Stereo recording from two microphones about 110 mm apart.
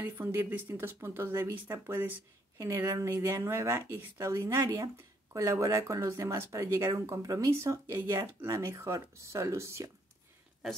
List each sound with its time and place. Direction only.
0.0 s speech: 20° right (ahead or behind)